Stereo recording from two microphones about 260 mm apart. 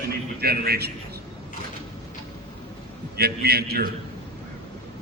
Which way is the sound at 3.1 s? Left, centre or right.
Right.